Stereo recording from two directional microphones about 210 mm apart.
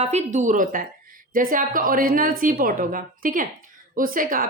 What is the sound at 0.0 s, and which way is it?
A woman's voice, 35° right (ahead or behind).